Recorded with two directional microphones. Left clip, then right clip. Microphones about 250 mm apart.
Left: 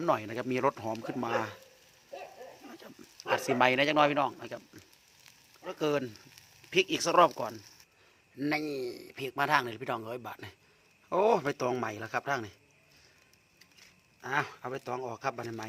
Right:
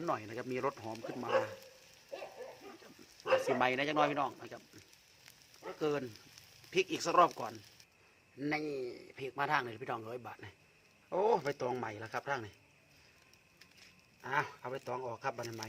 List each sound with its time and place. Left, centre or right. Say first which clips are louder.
0.0 s speech: left 8 dB; left
2.8 s speech: left 1 dB; left
5.6 s a man's voice: left 5 dB; left
14.2 s speech: left 3 dB; left